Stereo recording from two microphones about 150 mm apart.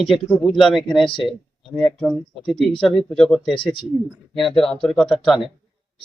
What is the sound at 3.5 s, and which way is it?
Speech, 35° left (ahead or behind).